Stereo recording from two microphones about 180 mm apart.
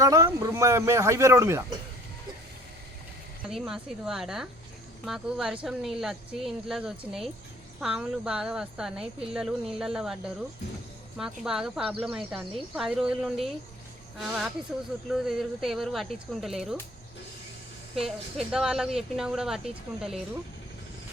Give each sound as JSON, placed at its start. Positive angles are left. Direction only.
{"t": 0.0, "sound": "speech", "side_deg": -20}
{"t": 3.5, "sound": "speech", "side_deg": 0}
{"t": 17.9, "sound": "speech", "side_deg": 0}